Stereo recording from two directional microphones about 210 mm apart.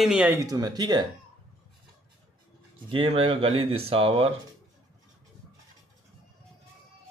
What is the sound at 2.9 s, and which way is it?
Speech, 25° right (ahead or behind).